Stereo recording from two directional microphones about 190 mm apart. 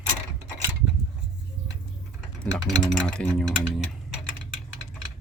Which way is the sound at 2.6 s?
5° left (ahead or behind).